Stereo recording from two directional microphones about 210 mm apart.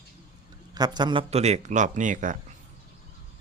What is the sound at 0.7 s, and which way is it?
A man's voice, 20° right (ahead or behind).